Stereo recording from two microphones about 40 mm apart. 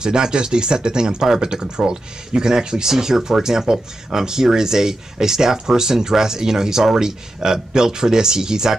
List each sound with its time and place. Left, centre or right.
0.0 s speech: centre